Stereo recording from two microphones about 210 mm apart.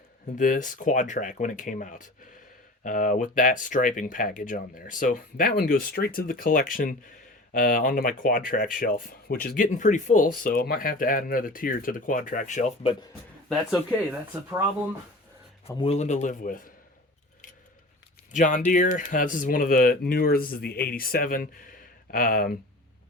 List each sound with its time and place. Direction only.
0.3 s speech: 40° left (ahead or behind)
15.6 s speech: 30° left (ahead or behind)
18.3 s speech: 35° left (ahead or behind)